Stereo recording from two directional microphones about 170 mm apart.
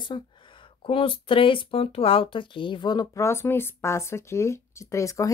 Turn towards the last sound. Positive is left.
turn(degrees=20)  # may be behind; listen again after turning